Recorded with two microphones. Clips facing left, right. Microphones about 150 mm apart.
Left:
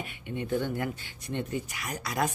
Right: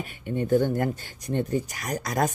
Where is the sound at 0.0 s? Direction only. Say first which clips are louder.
Right 6 dB; 40° right (ahead or behind).